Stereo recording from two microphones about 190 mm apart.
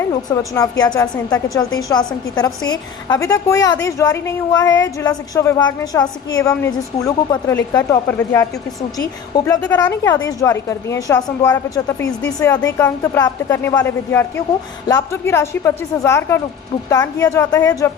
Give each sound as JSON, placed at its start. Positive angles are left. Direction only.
{"t": 0.1, "sound": "a woman's voice", "side_deg": 20}